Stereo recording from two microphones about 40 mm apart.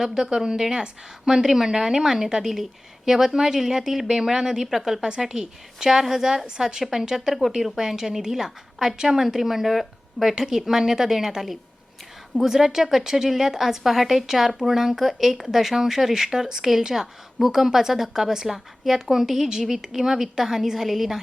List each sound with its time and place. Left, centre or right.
0.0 s a woman's voice: centre